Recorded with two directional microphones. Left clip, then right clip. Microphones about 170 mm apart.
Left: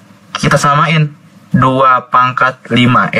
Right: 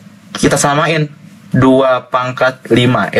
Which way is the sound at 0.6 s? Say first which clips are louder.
Left 3 dB; 40° right (ahead or behind).